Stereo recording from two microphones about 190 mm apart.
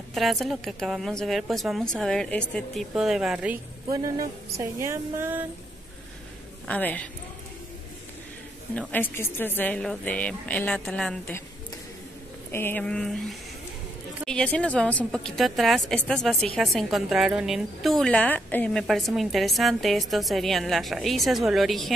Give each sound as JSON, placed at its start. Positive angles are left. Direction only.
{"t": 0.1, "sound": "a woman's voice", "side_deg": 0}
{"t": 3.9, "sound": "speech", "side_deg": -20}
{"t": 4.6, "sound": "a sound", "side_deg": -15}
{"t": 6.7, "sound": "a woman's voice", "side_deg": 10}
{"t": 8.7, "sound": "a woman's voice", "side_deg": 10}
{"t": 12.4, "sound": "a woman's voice", "side_deg": 10}
{"t": 14.2, "sound": "a woman's voice", "side_deg": 5}